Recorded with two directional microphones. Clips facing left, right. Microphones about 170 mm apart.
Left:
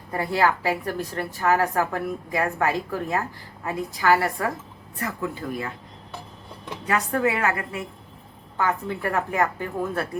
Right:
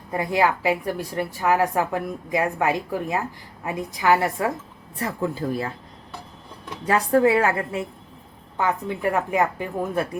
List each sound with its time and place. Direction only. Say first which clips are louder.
0.1 s a woman's voice: right 1 dB; 15° right (ahead or behind); by 5.7 s 30° right (ahead or behind)
6.8 s a woman's voice: right 5 dB; 30° right (ahead or behind)